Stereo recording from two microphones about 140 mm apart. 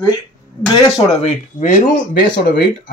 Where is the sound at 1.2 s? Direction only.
80° left.